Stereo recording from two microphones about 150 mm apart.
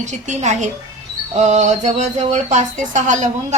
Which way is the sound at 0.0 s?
50° right (ahead or behind).